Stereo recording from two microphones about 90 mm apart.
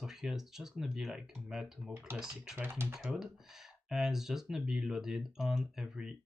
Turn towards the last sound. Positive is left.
turn(degrees=-5)  # may be behind; listen again after turning